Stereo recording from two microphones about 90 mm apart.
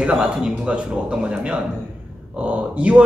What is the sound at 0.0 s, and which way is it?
Speech, 10° right (ahead or behind).